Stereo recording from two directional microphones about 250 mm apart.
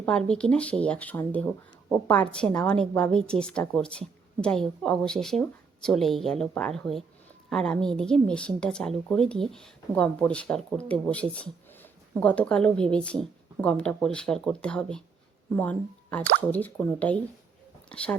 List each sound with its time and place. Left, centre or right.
0.3 s a woman's voice: centre